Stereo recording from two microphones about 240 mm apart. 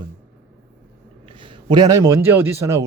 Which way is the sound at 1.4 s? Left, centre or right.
Centre.